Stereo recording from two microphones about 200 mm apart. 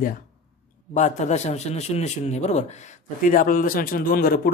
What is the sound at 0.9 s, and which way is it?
A man's voice, 35° left (ahead or behind).